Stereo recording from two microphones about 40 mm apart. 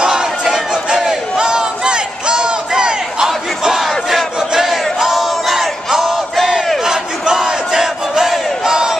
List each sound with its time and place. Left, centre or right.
0.0 s crowd: centre
4.4 s crowd: centre
5.0 s battle cry: centre
8.6 s crowd: centre